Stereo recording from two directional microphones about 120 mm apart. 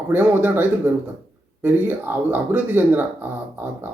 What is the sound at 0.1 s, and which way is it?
Speech, 15° right (ahead or behind).